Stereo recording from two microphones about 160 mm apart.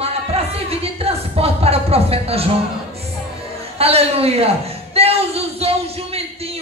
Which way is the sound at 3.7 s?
40° right (ahead or behind).